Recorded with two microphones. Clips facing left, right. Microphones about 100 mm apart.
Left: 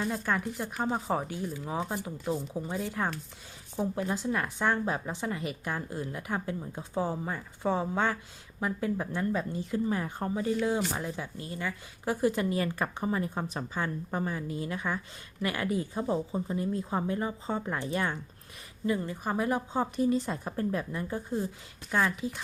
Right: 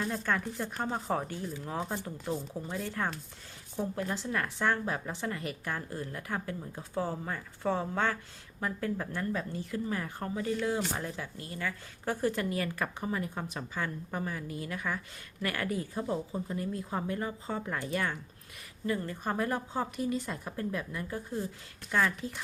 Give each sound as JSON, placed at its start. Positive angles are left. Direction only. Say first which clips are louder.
{"t": 0.0, "sound": "a woman's voice", "louder": "left 2 dB", "side_deg": 10}